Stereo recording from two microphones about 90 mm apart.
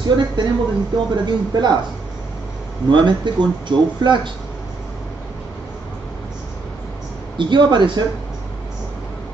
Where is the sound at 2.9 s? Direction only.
60° right (ahead or behind).